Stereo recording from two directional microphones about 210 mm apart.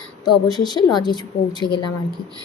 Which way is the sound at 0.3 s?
Centre (ahead or behind).